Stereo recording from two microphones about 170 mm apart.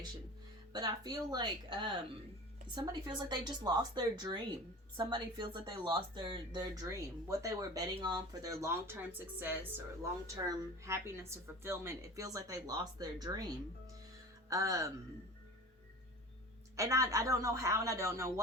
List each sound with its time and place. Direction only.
0.7 s speech: 25° right (ahead or behind)
14.5 s speech: 20° right (ahead or behind)
16.7 s speech: 20° right (ahead or behind)